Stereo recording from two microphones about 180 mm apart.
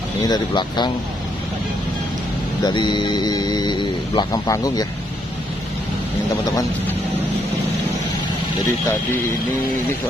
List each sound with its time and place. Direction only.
0.2 s speech: 25° left (ahead or behind)
2.6 s speech: 25° left (ahead or behind)